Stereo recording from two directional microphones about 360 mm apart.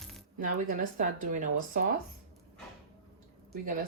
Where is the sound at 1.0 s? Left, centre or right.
Right.